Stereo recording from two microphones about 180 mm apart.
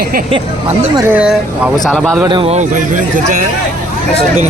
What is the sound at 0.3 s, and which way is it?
Speech, 30° right (ahead or behind).